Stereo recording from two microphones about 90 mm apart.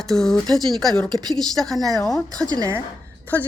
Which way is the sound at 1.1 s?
50° right (ahead or behind).